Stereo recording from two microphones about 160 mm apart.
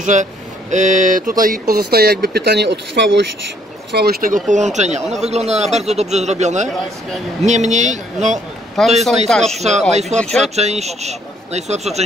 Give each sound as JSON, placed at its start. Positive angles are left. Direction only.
{"t": 0.0, "sound": "speech", "side_deg": -50}
{"t": 3.9, "sound": "speech", "side_deg": -75}
{"t": 8.8, "sound": "speech", "side_deg": 0}
{"t": 9.6, "sound": "speech", "side_deg": -45}
{"t": 10.2, "sound": "speech", "side_deg": 5}
{"t": 10.5, "sound": "speech", "side_deg": -45}